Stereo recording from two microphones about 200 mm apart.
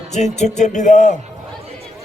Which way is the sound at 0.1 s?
35° left (ahead or behind).